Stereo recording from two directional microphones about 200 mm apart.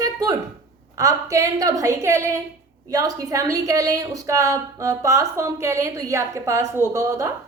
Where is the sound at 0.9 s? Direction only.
15° right (ahead or behind).